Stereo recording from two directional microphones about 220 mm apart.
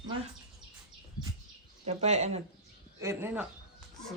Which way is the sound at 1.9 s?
30° right (ahead or behind).